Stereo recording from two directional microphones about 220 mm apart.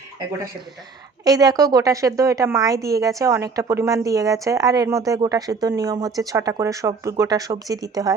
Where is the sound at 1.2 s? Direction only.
15° right (ahead or behind).